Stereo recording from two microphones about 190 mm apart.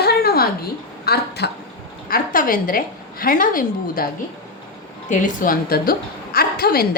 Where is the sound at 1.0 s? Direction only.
55° left (ahead or behind).